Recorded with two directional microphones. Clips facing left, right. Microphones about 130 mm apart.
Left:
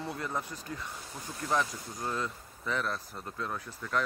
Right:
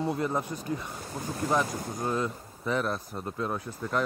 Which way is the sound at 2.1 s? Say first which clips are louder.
Right 4 dB; 20° right (ahead or behind).